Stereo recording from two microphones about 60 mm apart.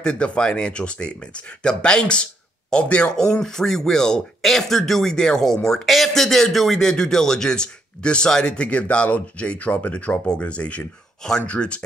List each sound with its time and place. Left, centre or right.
0.0 s speech: centre